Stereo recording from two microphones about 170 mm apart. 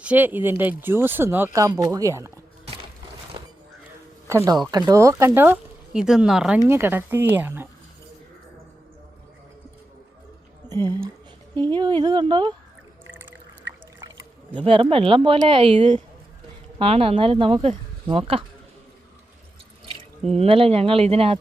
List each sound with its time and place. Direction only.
0.0 s speech: 10° right (ahead or behind)
3.3 s music: 25° right (ahead or behind)
4.3 s speech: 15° right (ahead or behind)
6.7 s speech: 15° right (ahead or behind)
11.5 s speech: 10° left (ahead or behind)
12.0 s speech: 25° right (ahead or behind)
14.6 s speech: 35° right (ahead or behind)
16.7 s speech: 35° right (ahead or behind)
20.3 s speech: 35° right (ahead or behind)